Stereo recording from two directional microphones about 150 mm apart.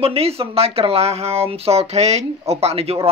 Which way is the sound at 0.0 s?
40° right (ahead or behind).